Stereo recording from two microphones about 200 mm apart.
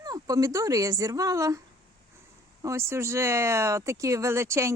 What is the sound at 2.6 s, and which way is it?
Speech, 15° right (ahead or behind).